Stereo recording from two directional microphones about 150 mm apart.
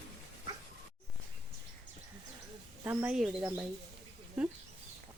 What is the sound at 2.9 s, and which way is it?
Speech, 15° right (ahead or behind).